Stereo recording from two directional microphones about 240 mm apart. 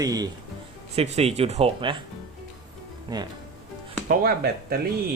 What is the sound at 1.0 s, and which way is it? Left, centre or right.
Speech, right.